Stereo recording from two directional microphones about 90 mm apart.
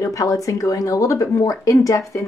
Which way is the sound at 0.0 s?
40° left (ahead or behind).